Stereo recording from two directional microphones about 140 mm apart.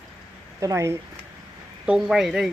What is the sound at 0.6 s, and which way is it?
Speech, 20° right (ahead or behind).